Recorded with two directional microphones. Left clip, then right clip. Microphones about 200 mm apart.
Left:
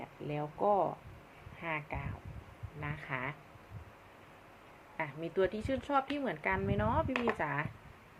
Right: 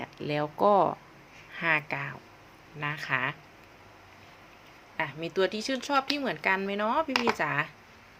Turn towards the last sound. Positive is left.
turn(degrees=-20)  # may be behind; listen again after turning